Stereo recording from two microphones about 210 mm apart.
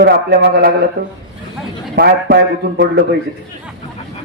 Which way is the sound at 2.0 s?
50° right (ahead or behind).